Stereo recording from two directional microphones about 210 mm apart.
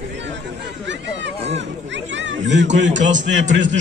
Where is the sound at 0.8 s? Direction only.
60° right (ahead or behind).